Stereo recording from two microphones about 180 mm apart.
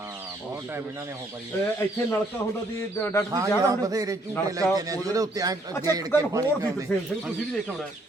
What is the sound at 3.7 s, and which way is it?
A man's voice, 20° right (ahead or behind).